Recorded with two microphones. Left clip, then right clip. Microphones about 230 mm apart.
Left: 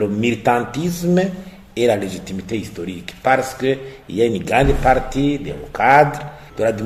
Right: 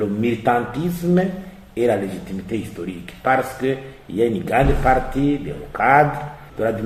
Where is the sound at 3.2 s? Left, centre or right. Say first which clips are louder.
Left 2 dB; left.